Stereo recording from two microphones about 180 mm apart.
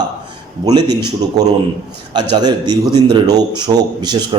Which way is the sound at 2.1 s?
25° right (ahead or behind).